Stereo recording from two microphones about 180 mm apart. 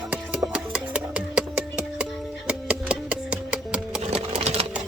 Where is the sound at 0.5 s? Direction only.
5° right (ahead or behind).